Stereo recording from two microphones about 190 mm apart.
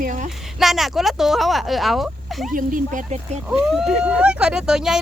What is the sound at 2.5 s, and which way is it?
Speech, 45° right (ahead or behind).